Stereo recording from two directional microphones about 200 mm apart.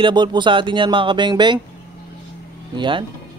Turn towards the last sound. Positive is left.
turn(degrees=-25)  # may be behind; listen again after turning